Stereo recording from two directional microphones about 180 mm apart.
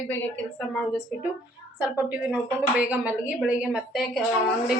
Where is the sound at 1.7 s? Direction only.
10° right (ahead or behind).